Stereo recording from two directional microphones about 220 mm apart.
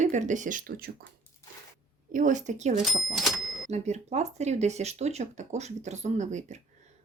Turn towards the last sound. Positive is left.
turn(degrees=-30)  # may be behind; listen again after turning